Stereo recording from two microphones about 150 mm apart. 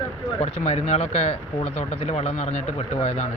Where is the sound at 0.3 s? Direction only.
45° left (ahead or behind).